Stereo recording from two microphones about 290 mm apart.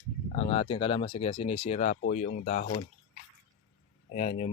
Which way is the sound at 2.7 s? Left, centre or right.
Centre.